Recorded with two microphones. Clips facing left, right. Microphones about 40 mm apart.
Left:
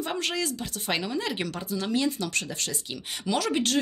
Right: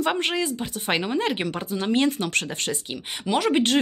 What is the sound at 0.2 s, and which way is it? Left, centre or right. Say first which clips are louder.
Speech: right 4 dB; right.